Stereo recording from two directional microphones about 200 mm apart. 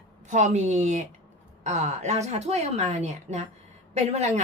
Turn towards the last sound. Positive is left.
turn(degrees=-35)  # may be behind; listen again after turning